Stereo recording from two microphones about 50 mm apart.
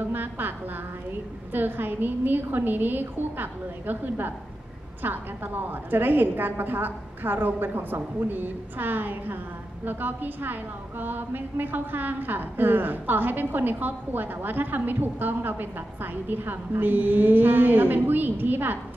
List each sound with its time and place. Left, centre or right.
0.0 s music: right
1.5 s a woman's voice: right